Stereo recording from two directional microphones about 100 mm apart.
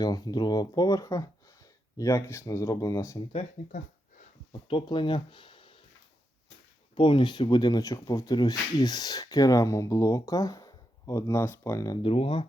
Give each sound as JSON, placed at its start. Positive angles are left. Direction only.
{"t": 0.0, "sound": "speech", "side_deg": 40}
{"t": 4.7, "sound": "speech", "side_deg": 50}
{"t": 6.9, "sound": "speech", "side_deg": 60}
{"t": 12.0, "sound": "speech", "side_deg": 70}